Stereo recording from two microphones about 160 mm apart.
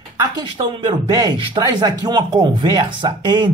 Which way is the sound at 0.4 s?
25° right (ahead or behind).